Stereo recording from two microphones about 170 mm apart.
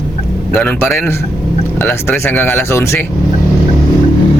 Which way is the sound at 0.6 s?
10° left (ahead or behind).